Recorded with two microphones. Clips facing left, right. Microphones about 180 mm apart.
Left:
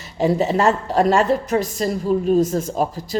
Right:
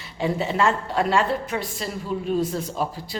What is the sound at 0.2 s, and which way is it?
A woman's voice, 40° left (ahead or behind).